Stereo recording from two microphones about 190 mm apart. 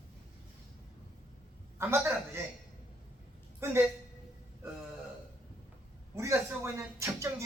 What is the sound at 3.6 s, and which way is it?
Speech, 10° right (ahead or behind).